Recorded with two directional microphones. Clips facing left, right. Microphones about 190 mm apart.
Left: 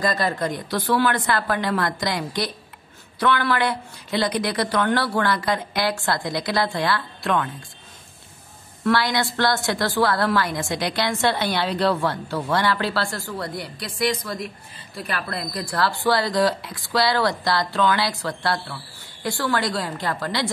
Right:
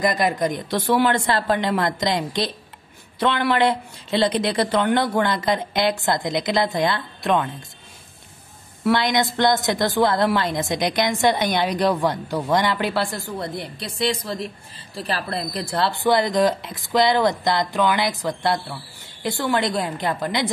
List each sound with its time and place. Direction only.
0.0 s a woman's voice: 15° right (ahead or behind)
8.9 s a woman's voice: 20° right (ahead or behind)